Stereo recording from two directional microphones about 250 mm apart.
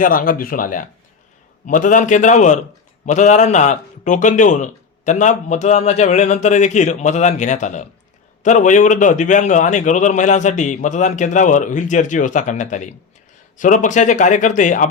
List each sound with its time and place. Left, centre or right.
0.0 s a man's voice: left